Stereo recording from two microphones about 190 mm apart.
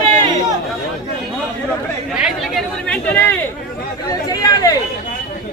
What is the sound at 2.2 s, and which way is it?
Chatter, centre (ahead or behind).